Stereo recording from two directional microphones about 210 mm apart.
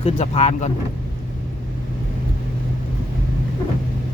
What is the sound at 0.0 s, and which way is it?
Speech, 30° left (ahead or behind).